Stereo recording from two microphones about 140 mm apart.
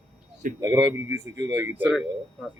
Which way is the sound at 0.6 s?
30° right (ahead or behind).